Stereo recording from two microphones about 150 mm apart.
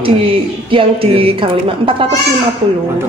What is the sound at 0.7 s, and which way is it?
A woman's voice, 35° right (ahead or behind).